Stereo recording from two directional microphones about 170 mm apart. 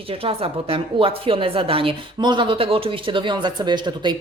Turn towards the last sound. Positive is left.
turn(degrees=-25)  # may be behind; listen again after turning